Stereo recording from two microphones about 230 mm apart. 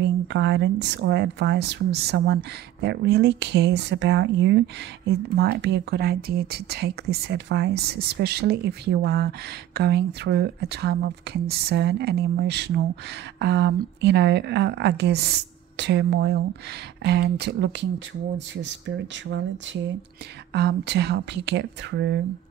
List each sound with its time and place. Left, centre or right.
0.0 s speech: right